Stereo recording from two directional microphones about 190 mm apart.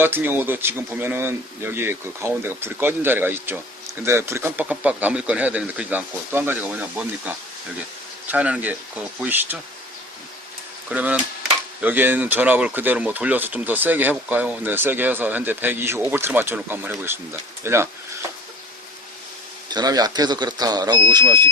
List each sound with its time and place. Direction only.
0.0 s speech: 10° right (ahead or behind)
10.8 s speech: 10° right (ahead or behind)
19.7 s speech: 20° right (ahead or behind)